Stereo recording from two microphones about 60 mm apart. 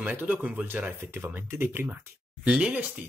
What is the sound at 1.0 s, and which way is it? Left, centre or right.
Speech, right.